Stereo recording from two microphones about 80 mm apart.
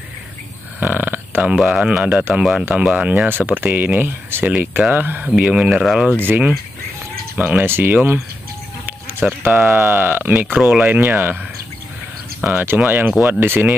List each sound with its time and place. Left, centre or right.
0.7 s burping: right
1.5 s speech: centre
6.0 s speech: right
9.4 s speech: right
10.5 s speech: centre
10.9 s speech: right
12.4 s speech: right